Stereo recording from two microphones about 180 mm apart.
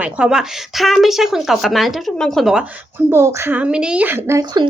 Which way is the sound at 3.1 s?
15° right (ahead or behind).